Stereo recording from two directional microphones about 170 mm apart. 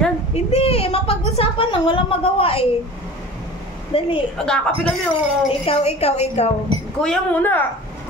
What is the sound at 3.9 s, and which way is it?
Speech, 35° left (ahead or behind).